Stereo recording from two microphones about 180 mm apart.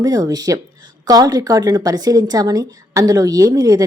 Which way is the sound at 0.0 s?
20° right (ahead or behind).